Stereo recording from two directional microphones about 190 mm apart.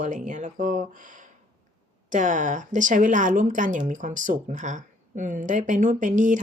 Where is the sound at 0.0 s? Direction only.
40° right (ahead or behind).